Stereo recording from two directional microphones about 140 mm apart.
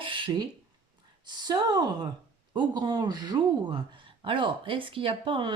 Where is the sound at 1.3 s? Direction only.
30° right (ahead or behind).